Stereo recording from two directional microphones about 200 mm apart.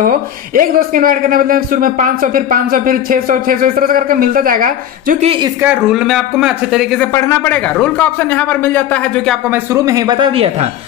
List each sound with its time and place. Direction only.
0.6 s a man's voice: 45° right (ahead or behind)
5.6 s speech: 5° right (ahead or behind)
7.1 s speech: 15° left (ahead or behind)
9.5 s speech: 15° right (ahead or behind)